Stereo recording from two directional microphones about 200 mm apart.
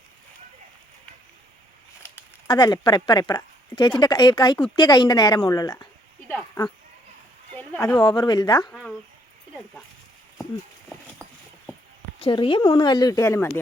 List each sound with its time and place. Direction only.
2.0 s a woman's voice: 20° left (ahead or behind)
6.3 s a sound: 10° left (ahead or behind)
7.7 s speech: 10° left (ahead or behind)
7.9 s speech: 20° left (ahead or behind)
8.7 s speech: centre (ahead or behind)
10.8 s clip-clop: centre (ahead or behind)
12.2 s speech: 25° left (ahead or behind)